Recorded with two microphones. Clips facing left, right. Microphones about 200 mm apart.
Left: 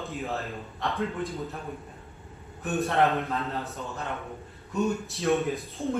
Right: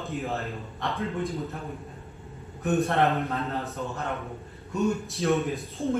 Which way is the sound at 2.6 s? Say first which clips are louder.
Right 4 dB; 15° right (ahead or behind).